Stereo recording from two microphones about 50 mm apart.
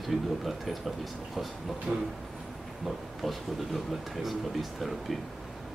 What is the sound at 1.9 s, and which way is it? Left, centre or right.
Speech, right.